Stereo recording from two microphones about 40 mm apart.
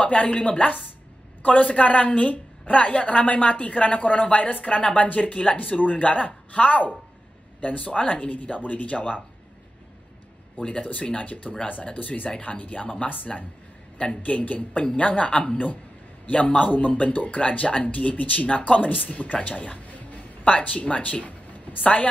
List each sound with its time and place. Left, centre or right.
0.0 s a woman's voice: left
10.6 s a woman's voice: left
13.9 s a woman's voice: left